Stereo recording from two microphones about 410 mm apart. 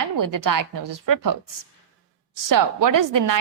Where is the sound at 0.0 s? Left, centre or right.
Right.